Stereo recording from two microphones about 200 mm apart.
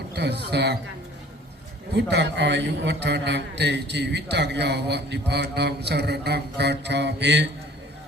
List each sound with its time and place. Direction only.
0.1 s a man's voice: 55° right (ahead or behind)
2.0 s a man's voice: 60° right (ahead or behind)